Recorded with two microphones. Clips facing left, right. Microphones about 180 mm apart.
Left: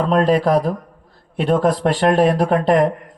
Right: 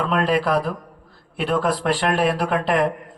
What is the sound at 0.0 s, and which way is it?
A man's voice, 35° left (ahead or behind).